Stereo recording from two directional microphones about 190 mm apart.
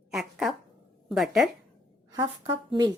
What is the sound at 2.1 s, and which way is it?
Speech, 25° right (ahead or behind).